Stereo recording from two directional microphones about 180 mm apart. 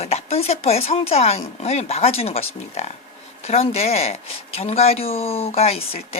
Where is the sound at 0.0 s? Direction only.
35° left (ahead or behind).